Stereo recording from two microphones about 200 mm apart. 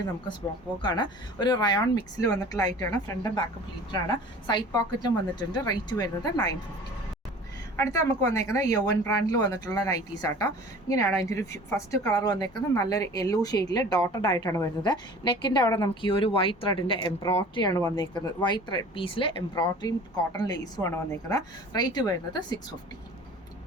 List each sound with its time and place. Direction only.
0.8 s a woman's voice: 20° left (ahead or behind)
4.4 s a woman's voice: 20° left (ahead or behind)
7.8 s a woman's voice: 15° left (ahead or behind)